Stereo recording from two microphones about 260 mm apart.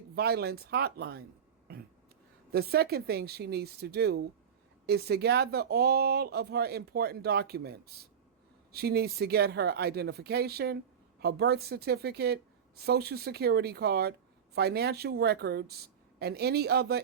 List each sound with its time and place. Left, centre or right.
0.2 s a woman's voice: right
2.5 s a woman's voice: right